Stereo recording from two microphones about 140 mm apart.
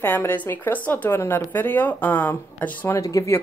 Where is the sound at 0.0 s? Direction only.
15° left (ahead or behind).